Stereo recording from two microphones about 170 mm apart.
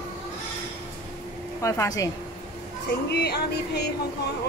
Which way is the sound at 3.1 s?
75° left (ahead or behind).